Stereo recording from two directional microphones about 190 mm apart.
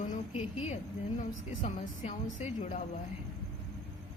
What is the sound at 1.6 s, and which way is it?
A woman's voice, 40° left (ahead or behind).